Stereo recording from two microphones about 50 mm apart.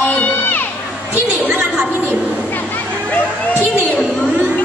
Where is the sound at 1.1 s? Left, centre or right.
Right.